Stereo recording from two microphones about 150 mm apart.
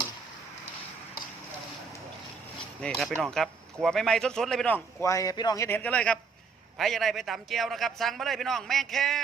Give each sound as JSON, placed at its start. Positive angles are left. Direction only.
{"t": 2.8, "sound": "a man's voice", "side_deg": 0}
{"t": 5.0, "sound": "speech", "side_deg": 25}
{"t": 5.6, "sound": "a man's voice", "side_deg": 10}